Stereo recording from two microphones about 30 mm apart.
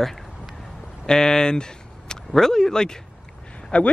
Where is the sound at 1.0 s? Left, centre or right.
Left.